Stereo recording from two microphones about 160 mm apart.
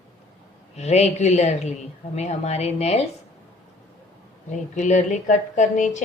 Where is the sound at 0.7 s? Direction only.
45° left (ahead or behind).